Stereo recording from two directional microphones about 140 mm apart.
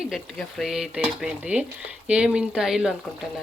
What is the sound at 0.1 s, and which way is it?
Speech, centre (ahead or behind).